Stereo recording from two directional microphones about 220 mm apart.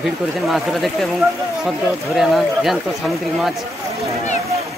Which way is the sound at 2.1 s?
Centre (ahead or behind).